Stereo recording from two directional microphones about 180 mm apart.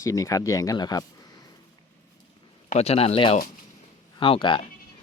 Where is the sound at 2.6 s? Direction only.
35° left (ahead or behind).